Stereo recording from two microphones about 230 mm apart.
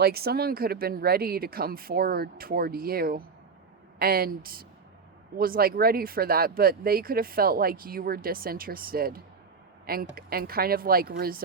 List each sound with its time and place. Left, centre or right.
0.0 s speech: right